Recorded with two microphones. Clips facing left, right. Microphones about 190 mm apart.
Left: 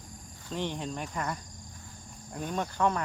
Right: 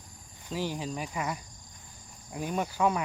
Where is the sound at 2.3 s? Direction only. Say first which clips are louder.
Right 2 dB; 10° right (ahead or behind).